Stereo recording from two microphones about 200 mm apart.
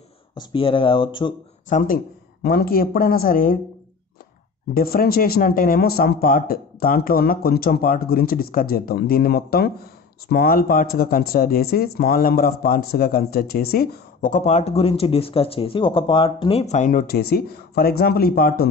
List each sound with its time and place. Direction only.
0.3 s speech: 25° left (ahead or behind)
1.7 s speech: 40° left (ahead or behind)
4.7 s speech: 50° left (ahead or behind)